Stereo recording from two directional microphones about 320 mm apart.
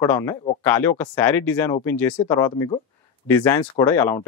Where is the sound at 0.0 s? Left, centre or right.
Centre.